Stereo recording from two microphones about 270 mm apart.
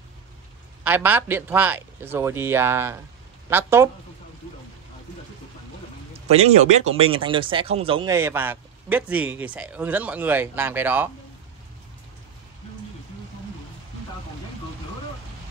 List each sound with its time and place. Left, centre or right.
0.8 s speech: centre
6.3 s speech: right; by 11.1 s centre